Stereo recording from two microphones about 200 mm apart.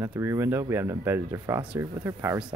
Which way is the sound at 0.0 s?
15° right (ahead or behind).